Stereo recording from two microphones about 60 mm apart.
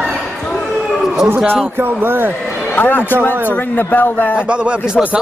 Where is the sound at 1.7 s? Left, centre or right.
Right.